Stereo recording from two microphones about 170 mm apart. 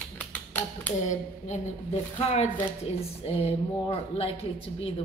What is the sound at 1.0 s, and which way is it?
A woman's voice, 45° left (ahead or behind).